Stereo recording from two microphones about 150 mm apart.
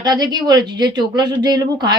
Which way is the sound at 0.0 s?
25° right (ahead or behind).